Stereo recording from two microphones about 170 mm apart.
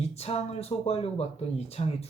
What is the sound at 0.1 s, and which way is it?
Speech, 40° left (ahead or behind).